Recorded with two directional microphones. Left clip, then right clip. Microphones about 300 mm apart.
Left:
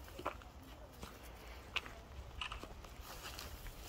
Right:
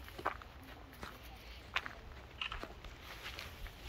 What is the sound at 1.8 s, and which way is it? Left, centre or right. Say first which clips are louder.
Walk: right 3 dB; centre.